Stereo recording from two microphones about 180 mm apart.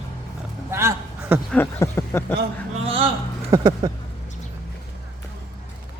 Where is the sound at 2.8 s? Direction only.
30° right (ahead or behind).